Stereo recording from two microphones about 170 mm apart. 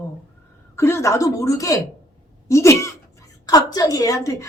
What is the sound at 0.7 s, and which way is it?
A woman's voice, 15° left (ahead or behind).